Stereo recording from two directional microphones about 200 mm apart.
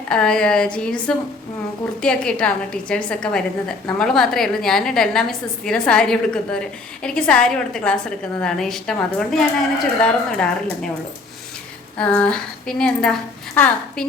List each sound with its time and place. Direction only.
0.1 s a woman's voice: 5° left (ahead or behind)
11.9 s a woman's voice: 5° left (ahead or behind)